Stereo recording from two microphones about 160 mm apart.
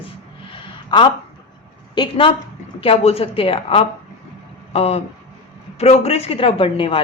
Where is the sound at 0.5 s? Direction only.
30° left (ahead or behind).